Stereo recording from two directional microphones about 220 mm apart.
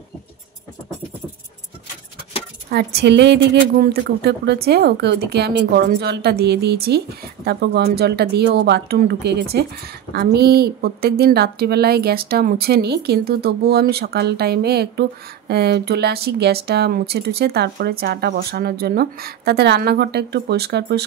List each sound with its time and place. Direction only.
2.7 s a woman's voice: 45° right (ahead or behind)